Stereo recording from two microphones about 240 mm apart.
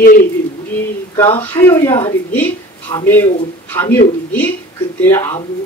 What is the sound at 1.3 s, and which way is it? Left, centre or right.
A woman's voice, centre.